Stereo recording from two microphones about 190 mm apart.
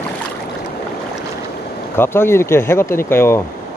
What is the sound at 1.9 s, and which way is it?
Speech, 10° left (ahead or behind).